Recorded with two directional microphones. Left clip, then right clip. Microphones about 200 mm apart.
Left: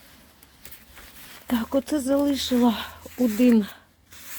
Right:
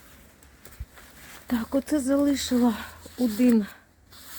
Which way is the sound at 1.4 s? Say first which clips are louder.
Left 3 dB; 40° left (ahead or behind).